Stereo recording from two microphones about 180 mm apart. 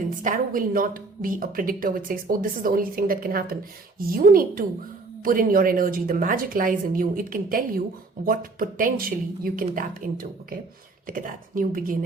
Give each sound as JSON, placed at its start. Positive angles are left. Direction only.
{"t": 0.1, "sound": "a woman's voice", "side_deg": -45}